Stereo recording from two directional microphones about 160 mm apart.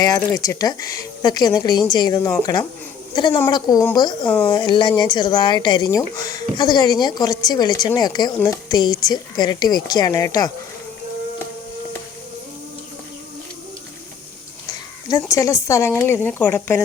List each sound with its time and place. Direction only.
0.0 s a woman's voice: 20° left (ahead or behind)
4.3 s speech: 10° left (ahead or behind)
4.5 s a woman's voice: 30° left (ahead or behind)
15.1 s speech: 20° left (ahead or behind)